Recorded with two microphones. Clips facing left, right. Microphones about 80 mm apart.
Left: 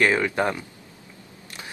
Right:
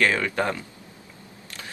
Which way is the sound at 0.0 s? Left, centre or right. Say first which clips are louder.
Left 2 dB; left.